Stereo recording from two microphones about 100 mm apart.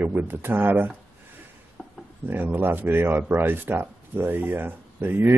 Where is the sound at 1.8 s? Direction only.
10° right (ahead or behind).